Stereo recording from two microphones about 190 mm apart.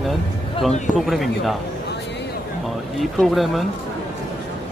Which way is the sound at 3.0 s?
Centre (ahead or behind).